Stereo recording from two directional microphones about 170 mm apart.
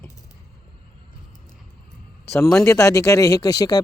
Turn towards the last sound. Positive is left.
turn(degrees=20)  # may be behind; listen again after turning